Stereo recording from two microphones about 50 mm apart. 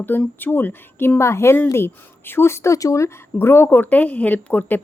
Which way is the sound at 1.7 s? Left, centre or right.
Left.